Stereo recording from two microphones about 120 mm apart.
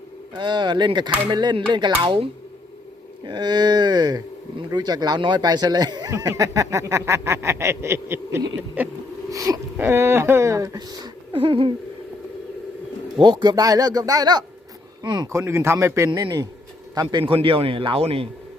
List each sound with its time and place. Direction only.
0.3 s a man's voice: 40° right (ahead or behind); by 8.9 s 15° right (ahead or behind)
9.3 s speech: 30° right (ahead or behind); by 11.7 s 45° right (ahead or behind)
13.1 s speech: 35° right (ahead or behind); by 16.0 s 20° right (ahead or behind)
16.0 s a man's voice: 35° right (ahead or behind); by 18.3 s 55° right (ahead or behind)